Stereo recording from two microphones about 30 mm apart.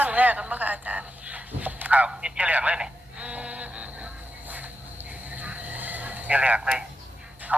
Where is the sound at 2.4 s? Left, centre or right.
Right.